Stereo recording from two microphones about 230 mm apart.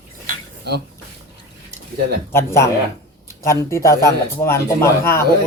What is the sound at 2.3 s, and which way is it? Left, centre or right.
Speech, centre.